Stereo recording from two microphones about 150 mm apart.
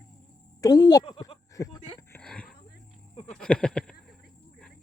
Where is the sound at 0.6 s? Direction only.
25° left (ahead or behind).